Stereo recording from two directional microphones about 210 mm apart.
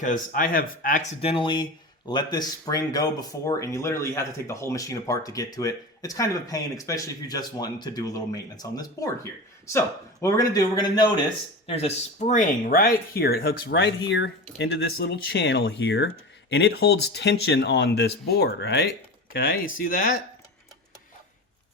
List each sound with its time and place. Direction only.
0.0 s speech: 40° left (ahead or behind)
1.3 s speech: 25° left (ahead or behind); by 20.1 s 40° left (ahead or behind)